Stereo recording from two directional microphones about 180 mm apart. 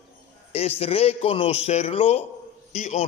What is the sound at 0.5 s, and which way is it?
A man's voice, 35° left (ahead or behind).